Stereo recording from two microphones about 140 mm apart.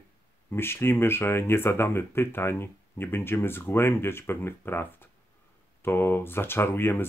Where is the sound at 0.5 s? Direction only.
15° left (ahead or behind).